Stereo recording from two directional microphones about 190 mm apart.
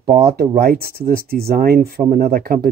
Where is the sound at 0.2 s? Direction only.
55° right (ahead or behind).